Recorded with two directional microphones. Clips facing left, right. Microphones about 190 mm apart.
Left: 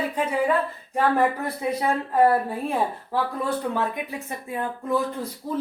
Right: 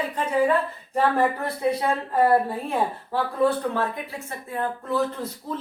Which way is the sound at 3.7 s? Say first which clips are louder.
Left 1 dB; 15° left (ahead or behind).